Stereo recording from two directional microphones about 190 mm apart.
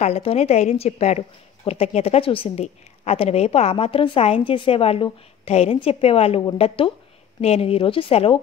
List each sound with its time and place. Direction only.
0.0 s a woman's voice: 30° left (ahead or behind)